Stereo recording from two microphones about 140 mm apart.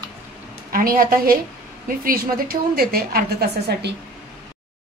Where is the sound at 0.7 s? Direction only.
90° right.